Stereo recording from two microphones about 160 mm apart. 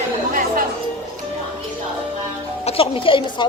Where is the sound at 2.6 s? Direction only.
40° left (ahead or behind).